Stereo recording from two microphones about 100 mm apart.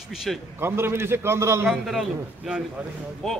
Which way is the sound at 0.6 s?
25° right (ahead or behind).